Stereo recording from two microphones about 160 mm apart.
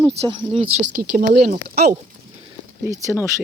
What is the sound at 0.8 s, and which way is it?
Speech, 85° right.